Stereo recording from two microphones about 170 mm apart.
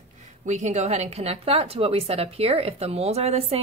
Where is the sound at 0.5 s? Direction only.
45° right (ahead or behind).